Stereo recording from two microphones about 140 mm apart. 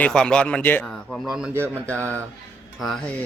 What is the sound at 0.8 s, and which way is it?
Speech, centre (ahead or behind).